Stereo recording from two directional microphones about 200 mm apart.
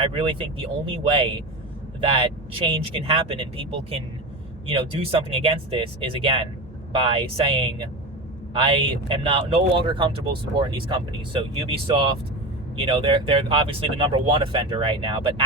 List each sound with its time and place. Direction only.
0.0 s speech: 25° right (ahead or behind)